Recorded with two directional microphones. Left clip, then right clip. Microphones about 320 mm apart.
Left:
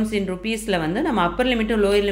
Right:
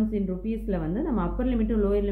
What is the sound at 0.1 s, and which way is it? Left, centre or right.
A woman's voice, centre.